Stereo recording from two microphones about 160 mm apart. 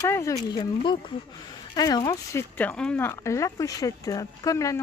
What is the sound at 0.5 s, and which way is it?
Speech, 30° left (ahead or behind).